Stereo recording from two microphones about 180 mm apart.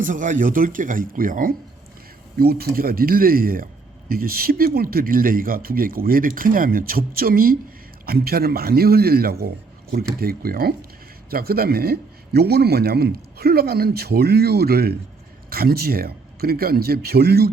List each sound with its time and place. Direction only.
0.0 s speech: 45° right (ahead or behind)